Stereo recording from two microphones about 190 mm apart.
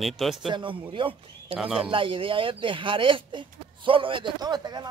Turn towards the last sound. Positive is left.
turn(degrees=-20)  # may be behind; listen again after turning